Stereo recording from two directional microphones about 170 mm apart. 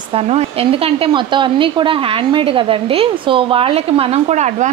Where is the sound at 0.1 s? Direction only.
35° right (ahead or behind).